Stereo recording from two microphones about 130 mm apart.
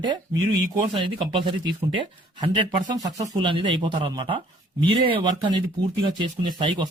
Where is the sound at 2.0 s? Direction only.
35° right (ahead or behind).